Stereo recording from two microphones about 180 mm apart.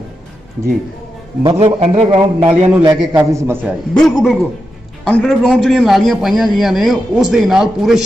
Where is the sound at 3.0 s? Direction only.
10° right (ahead or behind).